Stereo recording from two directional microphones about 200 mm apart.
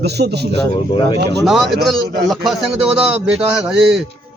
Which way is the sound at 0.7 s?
25° left (ahead or behind).